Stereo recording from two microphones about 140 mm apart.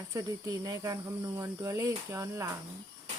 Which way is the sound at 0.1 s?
20° right (ahead or behind).